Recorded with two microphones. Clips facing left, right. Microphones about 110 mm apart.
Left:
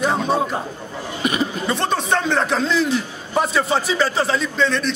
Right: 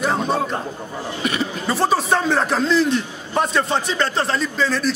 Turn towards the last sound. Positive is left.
turn(degrees=0)  # may be behind; listen again after turning